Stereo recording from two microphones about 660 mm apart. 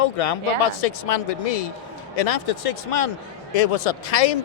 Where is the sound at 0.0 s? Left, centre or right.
Left.